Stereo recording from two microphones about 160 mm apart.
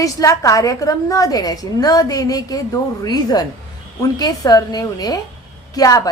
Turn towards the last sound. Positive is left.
turn(degrees=25)  # may be behind; listen again after turning